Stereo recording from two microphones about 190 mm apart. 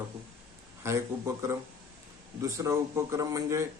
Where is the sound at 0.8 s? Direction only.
15° right (ahead or behind).